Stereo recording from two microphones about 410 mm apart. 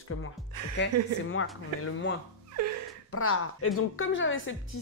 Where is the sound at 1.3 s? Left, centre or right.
Left.